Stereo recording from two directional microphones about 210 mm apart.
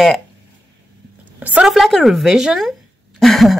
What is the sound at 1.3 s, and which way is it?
A woman's voice, 5° right (ahead or behind).